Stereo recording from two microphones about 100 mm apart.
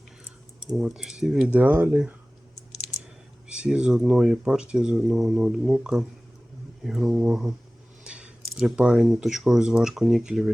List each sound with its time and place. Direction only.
0.8 s speech: 5° right (ahead or behind)
3.5 s speech: 10° right (ahead or behind)